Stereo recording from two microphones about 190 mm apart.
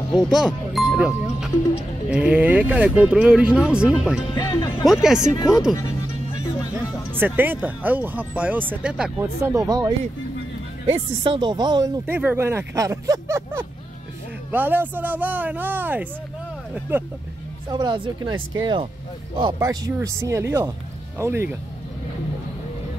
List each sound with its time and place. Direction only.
0.3 s music: centre (ahead or behind)
2.0 s speech: 5° right (ahead or behind)
4.4 s speech: 25° left (ahead or behind)
5.0 s speech: 5° right (ahead or behind)
6.4 s music: 20° left (ahead or behind)
7.2 s speech: 10° right (ahead or behind)
12.2 s speech: 10° right (ahead or behind)
17.6 s speech: 25° right (ahead or behind)